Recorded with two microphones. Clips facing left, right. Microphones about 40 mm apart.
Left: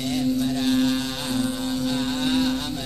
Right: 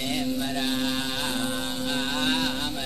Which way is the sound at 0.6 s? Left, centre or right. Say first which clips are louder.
Left 8 dB; centre.